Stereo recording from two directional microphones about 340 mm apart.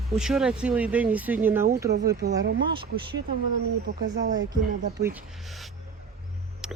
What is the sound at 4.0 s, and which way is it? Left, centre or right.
Speech, right.